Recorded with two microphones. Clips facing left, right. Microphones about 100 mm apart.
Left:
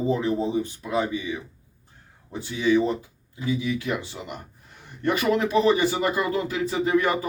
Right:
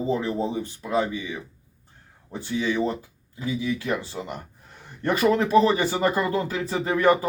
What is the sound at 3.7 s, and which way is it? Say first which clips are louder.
Speech: right 1 dB; 40° right (ahead or behind).